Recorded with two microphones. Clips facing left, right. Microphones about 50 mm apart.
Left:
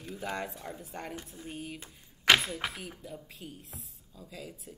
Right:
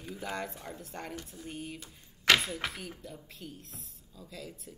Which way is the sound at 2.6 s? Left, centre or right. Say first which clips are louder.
Even; centre.